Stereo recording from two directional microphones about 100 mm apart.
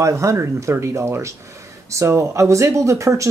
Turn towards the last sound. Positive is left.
turn(degrees=-30)  # may be behind; listen again after turning